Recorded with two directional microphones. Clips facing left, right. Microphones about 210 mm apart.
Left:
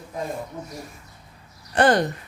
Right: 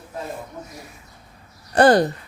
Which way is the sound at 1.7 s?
35° right (ahead or behind).